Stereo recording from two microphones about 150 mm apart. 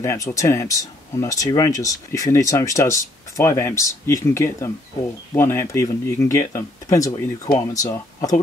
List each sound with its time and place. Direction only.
0.0 s speech: 20° left (ahead or behind)